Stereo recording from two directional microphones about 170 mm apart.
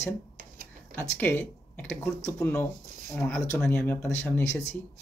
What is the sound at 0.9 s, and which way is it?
Speech, 10° left (ahead or behind).